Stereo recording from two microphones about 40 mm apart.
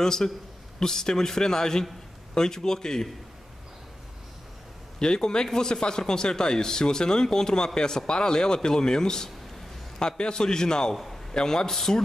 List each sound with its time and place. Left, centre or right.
0.0 s speech: centre
4.9 s speech: centre